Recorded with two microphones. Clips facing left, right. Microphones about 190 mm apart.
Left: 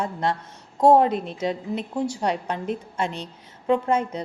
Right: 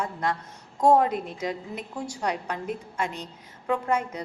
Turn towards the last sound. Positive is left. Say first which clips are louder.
# left 5 dB
turn(degrees=25)  # may be behind; listen again after turning